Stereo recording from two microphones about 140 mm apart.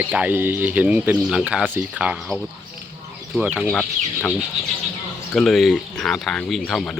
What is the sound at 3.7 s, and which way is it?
Chicken, 5° left (ahead or behind).